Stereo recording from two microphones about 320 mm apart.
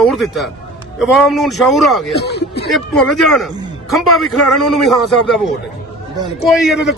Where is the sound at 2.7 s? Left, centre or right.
Centre.